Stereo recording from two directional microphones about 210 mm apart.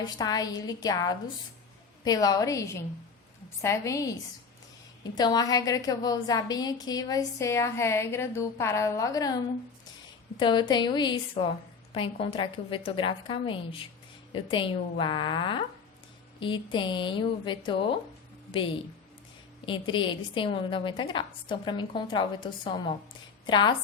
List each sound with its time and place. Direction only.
0.0 s a woman's voice: 20° left (ahead or behind)
19.6 s a woman's voice: 20° left (ahead or behind)